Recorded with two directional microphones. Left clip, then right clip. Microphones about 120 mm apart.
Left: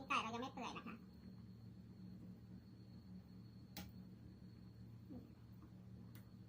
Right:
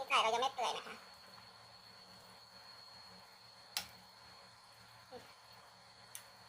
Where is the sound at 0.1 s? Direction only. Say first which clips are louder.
Right 10 dB; 75° right (ahead or behind).